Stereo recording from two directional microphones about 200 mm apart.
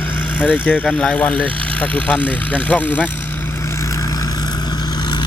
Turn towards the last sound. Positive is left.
turn(degrees=20)  # may be behind; listen again after turning